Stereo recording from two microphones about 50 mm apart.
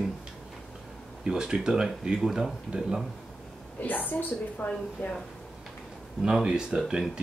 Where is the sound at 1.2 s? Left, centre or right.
Centre.